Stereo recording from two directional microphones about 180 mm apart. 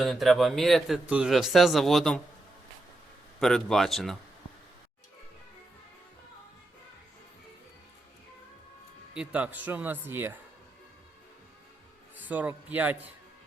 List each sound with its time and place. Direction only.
0.0 s a man's voice: centre (ahead or behind)
3.4 s a man's voice: centre (ahead or behind)
9.1 s a man's voice: 10° right (ahead or behind)
12.2 s a man's voice: 10° right (ahead or behind)